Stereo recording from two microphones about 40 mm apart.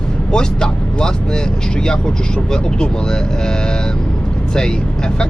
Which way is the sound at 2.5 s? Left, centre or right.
Centre.